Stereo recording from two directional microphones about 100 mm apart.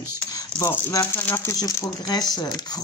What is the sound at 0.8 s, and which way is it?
Speech, 25° left (ahead or behind).